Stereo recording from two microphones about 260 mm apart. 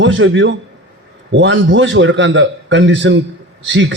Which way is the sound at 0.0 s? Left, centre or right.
Right.